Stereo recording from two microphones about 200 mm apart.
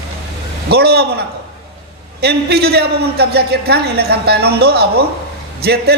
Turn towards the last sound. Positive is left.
turn(degrees=-55)  # may be behind; listen again after turning